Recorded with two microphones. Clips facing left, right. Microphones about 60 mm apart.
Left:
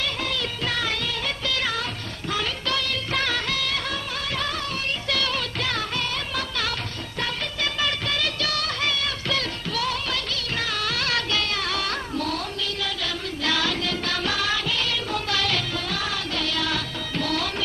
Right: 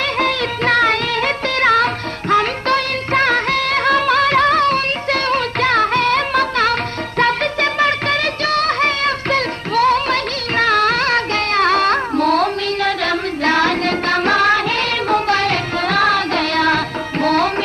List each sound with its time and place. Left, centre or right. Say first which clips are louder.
0.0 s music: right 10 dB; right
2.3 s music of bollywood: right 12 dB; right
7.2 s music: right 13 dB; right